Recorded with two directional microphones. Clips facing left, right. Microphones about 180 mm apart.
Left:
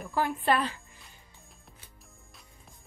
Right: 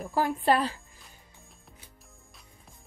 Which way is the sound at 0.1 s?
35° right (ahead or behind).